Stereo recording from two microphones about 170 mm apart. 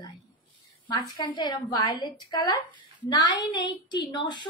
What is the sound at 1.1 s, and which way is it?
A woman's voice, 25° left (ahead or behind).